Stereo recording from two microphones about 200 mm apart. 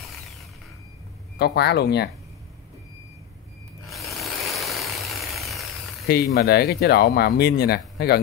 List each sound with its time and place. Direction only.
1.4 s speech: 55° left (ahead or behind)
3.8 s vehicle: centre (ahead or behind)
6.0 s speech: 50° left (ahead or behind)